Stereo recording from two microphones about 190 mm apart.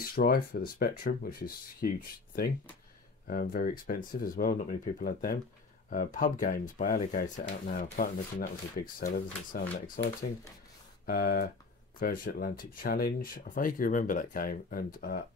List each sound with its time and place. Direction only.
0.0 s speech: 50° left (ahead or behind)
11.1 s speech: 50° left (ahead or behind)